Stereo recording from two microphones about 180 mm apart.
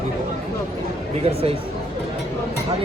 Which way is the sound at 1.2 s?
35° right (ahead or behind).